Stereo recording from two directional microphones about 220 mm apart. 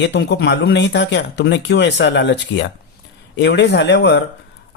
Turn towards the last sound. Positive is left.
turn(degrees=55)  # may be behind; listen again after turning